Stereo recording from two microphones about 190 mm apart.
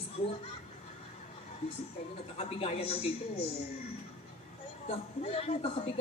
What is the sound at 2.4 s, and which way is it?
Speech, 30° left (ahead or behind).